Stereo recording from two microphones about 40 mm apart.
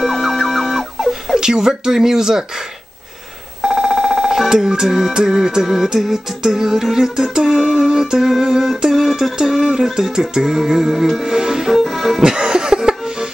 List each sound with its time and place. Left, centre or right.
0.0 s music: centre
1.4 s music: centre
3.6 s a sound: centre
4.5 s music: centre
11.1 s speech: centre
11.7 s music: centre
12.2 s music: centre